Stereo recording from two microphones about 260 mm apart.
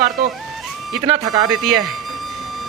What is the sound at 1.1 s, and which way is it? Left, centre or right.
Speech, centre.